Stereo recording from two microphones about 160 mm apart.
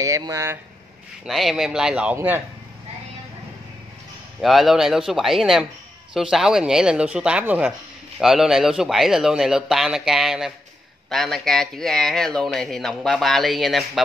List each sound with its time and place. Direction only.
0.0 s speech: 20° right (ahead or behind)
1.2 s speech: centre (ahead or behind)
4.4 s speech: centre (ahead or behind)